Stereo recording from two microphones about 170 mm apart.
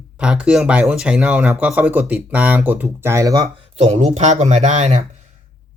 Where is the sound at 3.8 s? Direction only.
40° right (ahead or behind).